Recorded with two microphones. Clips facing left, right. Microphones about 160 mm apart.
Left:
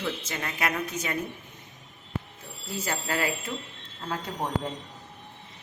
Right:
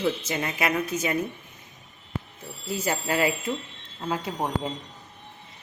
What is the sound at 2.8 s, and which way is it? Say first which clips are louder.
A woman's voice: right 5 dB; 15° right (ahead or behind).